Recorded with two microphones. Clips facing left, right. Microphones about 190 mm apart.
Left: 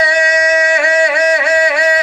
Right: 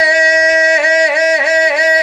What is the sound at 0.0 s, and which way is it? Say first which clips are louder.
Music: right 1 dB; 20° right (ahead or behind).